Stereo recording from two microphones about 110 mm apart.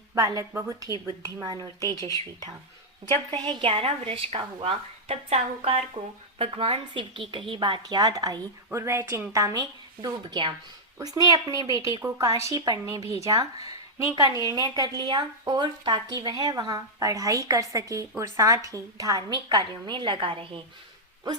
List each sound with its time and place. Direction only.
0.1 s a woman's voice: 30° right (ahead or behind)
3.3 s a woman's voice: 40° right (ahead or behind)
8.7 s speech: 25° right (ahead or behind)
10.2 s a woman's voice: 45° right (ahead or behind)
11.0 s a woman's voice: 35° right (ahead or behind); by 20.6 s 50° right (ahead or behind)